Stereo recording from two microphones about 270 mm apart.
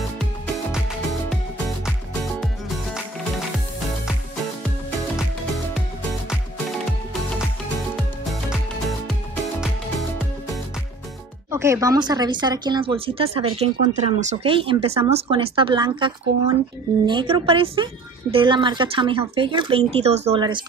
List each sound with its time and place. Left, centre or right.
0.2 s music: centre
7.9 s music: centre
9.6 s music: centre
11.5 s speech: centre